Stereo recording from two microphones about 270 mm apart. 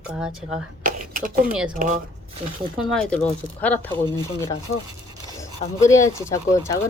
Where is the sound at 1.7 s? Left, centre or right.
Right.